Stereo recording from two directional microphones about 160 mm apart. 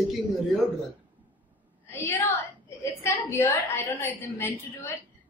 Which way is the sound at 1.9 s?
15° left (ahead or behind).